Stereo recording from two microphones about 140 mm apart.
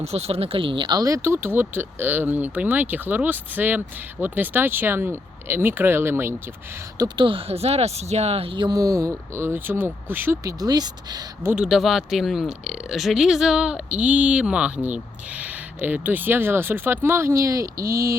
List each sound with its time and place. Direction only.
0.0 s a woman's voice: 50° right (ahead or behind); by 7.3 s 25° right (ahead or behind)
7.3 s speech: 40° right (ahead or behind); by 10.5 s 15° right (ahead or behind)
10.6 s speech: 30° right (ahead or behind)
11.5 s a woman's voice: 5° right (ahead or behind); by 18.1 s 25° right (ahead or behind)